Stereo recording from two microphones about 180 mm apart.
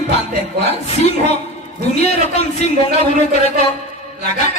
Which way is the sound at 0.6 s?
35° left (ahead or behind).